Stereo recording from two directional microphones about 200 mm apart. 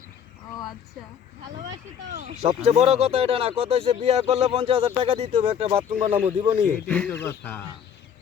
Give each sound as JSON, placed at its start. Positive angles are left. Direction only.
{"t": 2.0, "sound": "speech", "side_deg": -35}
{"t": 6.8, "sound": "speech", "side_deg": 5}